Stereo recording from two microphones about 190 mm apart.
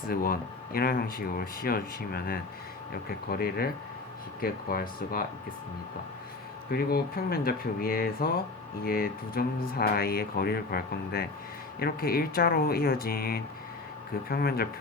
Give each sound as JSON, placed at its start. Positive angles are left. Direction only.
{"t": 0.1, "sound": "speech", "side_deg": 50}
{"t": 6.7, "sound": "speech", "side_deg": 55}